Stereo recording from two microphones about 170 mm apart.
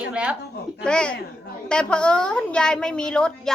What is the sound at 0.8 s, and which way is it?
A woman's voice, 5° left (ahead or behind).